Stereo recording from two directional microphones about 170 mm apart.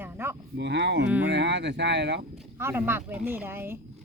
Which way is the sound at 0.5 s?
90° right.